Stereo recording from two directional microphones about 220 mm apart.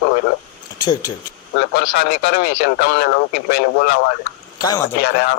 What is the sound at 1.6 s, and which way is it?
Speech, 50° left (ahead or behind).